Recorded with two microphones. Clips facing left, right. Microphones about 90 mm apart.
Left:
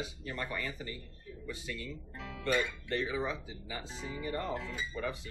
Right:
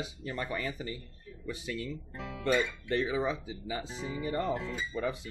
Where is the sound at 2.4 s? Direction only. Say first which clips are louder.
Right 3 dB; 15° right (ahead or behind).